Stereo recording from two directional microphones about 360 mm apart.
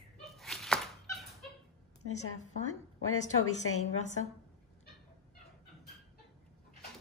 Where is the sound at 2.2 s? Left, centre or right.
Left.